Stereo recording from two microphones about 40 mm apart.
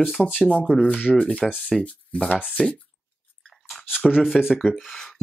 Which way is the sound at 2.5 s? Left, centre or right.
Left.